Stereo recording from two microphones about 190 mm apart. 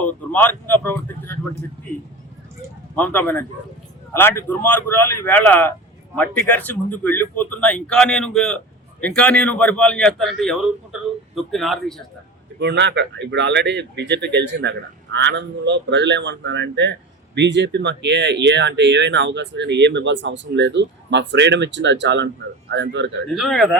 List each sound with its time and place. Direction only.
0.0 s speech: 10° left (ahead or behind)
2.9 s speech: 10° left (ahead or behind)
12.5 s speech: 65° right (ahead or behind)
23.3 s speech: centre (ahead or behind)